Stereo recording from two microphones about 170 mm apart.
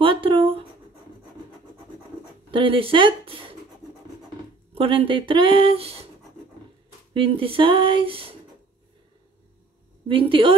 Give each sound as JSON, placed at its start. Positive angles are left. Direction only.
{"t": 0.0, "sound": "a sound", "side_deg": -30}
{"t": 2.5, "sound": "speech", "side_deg": -30}
{"t": 4.7, "sound": "speech", "side_deg": -30}
{"t": 7.2, "sound": "speech", "side_deg": -35}
{"t": 10.0, "sound": "speech", "side_deg": -30}